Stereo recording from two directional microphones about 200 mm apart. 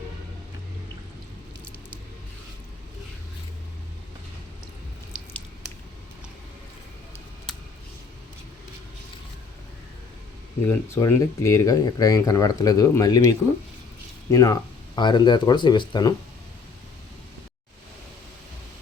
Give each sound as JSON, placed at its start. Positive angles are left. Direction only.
{"t": 10.7, "sound": "speech", "side_deg": 15}